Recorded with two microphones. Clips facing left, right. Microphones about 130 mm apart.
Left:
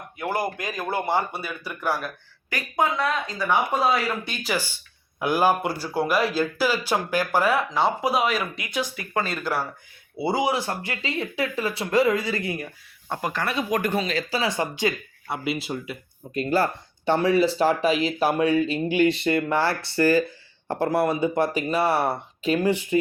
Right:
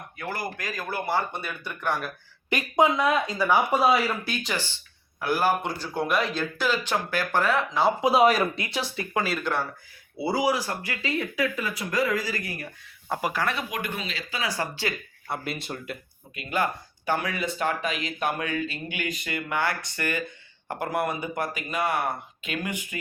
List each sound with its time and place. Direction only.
0.2 s speech: 20° left (ahead or behind)
1.3 s speech: centre (ahead or behind)
2.5 s speech: 20° right (ahead or behind); by 4.5 s centre (ahead or behind)
4.5 s speech: 10° left (ahead or behind)
8.2 s speech: 40° right (ahead or behind)
9.1 s speech: 5° right (ahead or behind)
10.2 s speech: 25° left (ahead or behind)
13.1 s speech: 5° right (ahead or behind)
13.7 s speech: 40° left (ahead or behind)
14.5 s speech: 20° left (ahead or behind)
15.3 s speech: 5° left (ahead or behind)
16.3 s speech: 35° left (ahead or behind)